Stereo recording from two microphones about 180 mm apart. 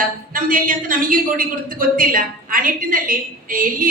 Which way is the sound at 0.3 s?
50° right (ahead or behind).